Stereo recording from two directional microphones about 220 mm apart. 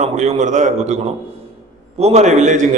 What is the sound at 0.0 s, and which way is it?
A man's voice, 35° right (ahead or behind).